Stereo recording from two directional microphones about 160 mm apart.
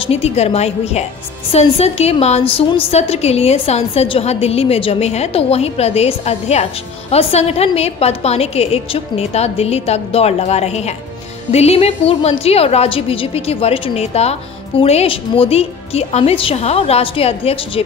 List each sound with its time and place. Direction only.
0.0 s a woman's voice: 40° left (ahead or behind)